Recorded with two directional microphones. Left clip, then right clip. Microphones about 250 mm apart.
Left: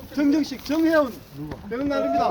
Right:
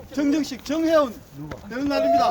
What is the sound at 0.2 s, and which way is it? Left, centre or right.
Speech, right.